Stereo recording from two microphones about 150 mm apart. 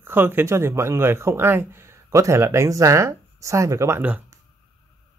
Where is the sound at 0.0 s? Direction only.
15° right (ahead or behind).